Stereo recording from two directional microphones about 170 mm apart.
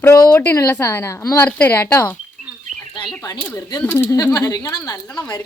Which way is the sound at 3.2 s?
10° left (ahead or behind).